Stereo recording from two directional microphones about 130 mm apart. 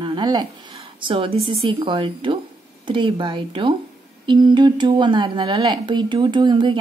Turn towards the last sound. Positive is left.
turn(degrees=-35)  # may be behind; listen again after turning